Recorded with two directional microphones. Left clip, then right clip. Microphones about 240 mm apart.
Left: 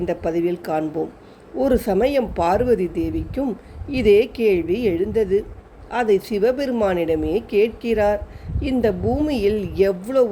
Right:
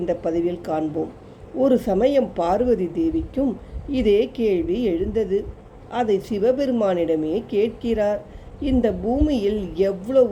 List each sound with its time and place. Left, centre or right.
0.0 s a woman's voice: centre